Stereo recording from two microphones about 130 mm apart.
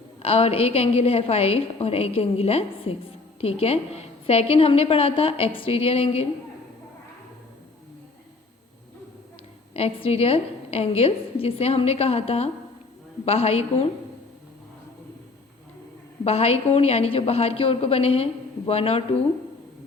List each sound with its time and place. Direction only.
0.2 s a woman's voice: 50° left (ahead or behind)
9.7 s a woman's voice: 50° left (ahead or behind)
16.2 s a woman's voice: 50° left (ahead or behind)